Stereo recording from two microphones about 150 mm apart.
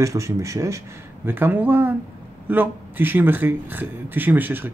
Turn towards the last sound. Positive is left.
turn(degrees=-10)  # may be behind; listen again after turning